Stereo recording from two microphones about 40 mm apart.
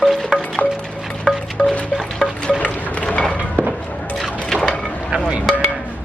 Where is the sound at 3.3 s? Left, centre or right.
Right.